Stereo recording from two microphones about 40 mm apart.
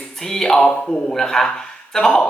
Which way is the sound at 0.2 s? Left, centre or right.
Centre.